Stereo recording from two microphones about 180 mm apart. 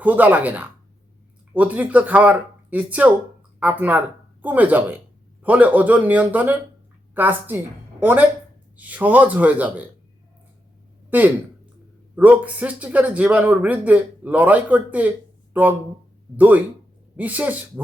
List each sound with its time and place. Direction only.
0.0 s a woman's voice: 10° right (ahead or behind)
11.1 s speech: 10° right (ahead or behind)
17.2 s speech: 10° right (ahead or behind)